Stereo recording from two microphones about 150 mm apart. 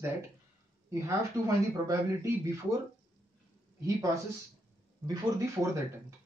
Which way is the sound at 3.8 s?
20° right (ahead or behind).